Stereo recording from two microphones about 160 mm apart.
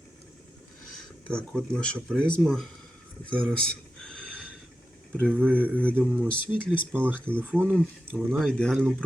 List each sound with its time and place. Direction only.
1.3 s speech: 5° left (ahead or behind)
5.3 s speech: 10° right (ahead or behind)
5.7 s speech: 10° left (ahead or behind)
6.9 s speech: 10° right (ahead or behind)
7.8 s speech: centre (ahead or behind)